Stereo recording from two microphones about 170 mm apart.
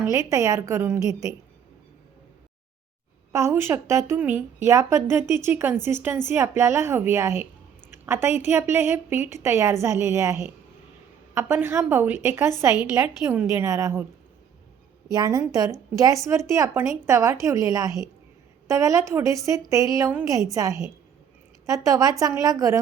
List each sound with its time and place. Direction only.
0.0 s a woman's voice: 20° right (ahead or behind)
3.3 s a woman's voice: 15° right (ahead or behind)
15.1 s speech: 20° right (ahead or behind)